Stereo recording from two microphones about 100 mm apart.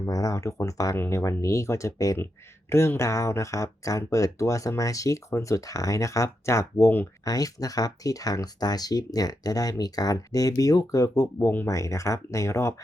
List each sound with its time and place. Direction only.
0.0 s speech: 35° left (ahead or behind)
0.9 s speech: 25° left (ahead or behind)
7.3 s speech: 35° left (ahead or behind)